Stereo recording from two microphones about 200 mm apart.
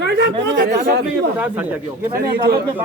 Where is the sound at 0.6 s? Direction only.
45° right (ahead or behind).